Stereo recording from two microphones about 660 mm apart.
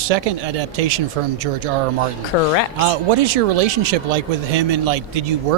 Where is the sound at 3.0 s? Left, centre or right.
Right.